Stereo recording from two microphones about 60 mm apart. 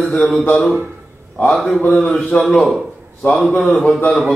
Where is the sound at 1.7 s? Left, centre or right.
Centre.